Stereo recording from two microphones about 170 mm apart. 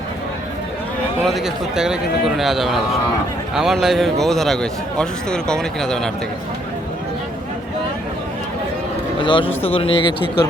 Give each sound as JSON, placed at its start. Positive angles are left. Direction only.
{"t": 1.2, "sound": "speech", "side_deg": 0}
{"t": 9.2, "sound": "speech", "side_deg": 30}